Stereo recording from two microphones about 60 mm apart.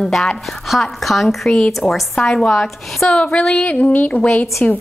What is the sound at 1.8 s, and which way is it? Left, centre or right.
A woman's voice, centre.